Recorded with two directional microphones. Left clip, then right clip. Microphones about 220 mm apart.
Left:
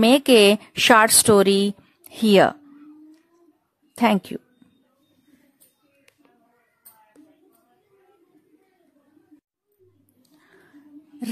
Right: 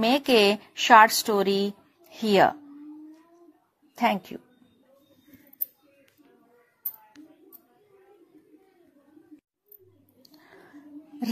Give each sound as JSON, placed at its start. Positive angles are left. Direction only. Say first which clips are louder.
{"t": 0.0, "sound": "speech", "louder": "left 6 dB", "side_deg": 50}
{"t": 4.0, "sound": "speech", "louder": "left 4 dB", "side_deg": 50}